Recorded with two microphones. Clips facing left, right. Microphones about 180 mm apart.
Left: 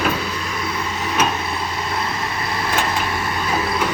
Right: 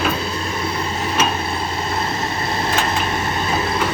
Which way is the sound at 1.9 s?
25° right (ahead or behind).